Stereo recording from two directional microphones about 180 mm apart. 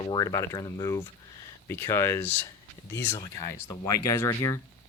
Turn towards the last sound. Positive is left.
turn(degrees=15)  # may be behind; listen again after turning